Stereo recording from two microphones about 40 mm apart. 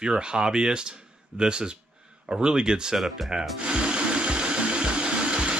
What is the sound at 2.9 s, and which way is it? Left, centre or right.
Speech, centre.